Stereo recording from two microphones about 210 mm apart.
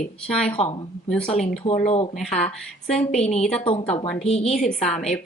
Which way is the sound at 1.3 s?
30° left (ahead or behind).